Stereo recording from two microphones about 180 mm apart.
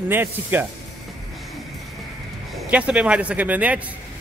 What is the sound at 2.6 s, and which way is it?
A man's voice, 5° right (ahead or behind).